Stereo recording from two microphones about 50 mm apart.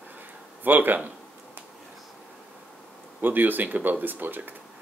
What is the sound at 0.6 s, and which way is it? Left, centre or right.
Speech, right.